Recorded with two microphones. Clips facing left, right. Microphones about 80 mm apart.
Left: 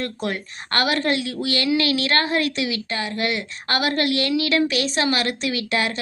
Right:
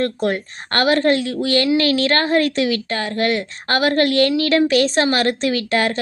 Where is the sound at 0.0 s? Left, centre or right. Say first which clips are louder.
Right 7 dB; right.